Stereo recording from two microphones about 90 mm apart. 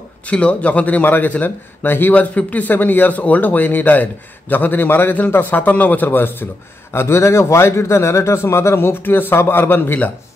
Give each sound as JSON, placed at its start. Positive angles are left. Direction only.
{"t": 0.3, "sound": "a man's voice", "side_deg": 15}